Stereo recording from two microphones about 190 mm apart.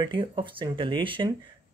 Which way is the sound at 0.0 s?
25° right (ahead or behind).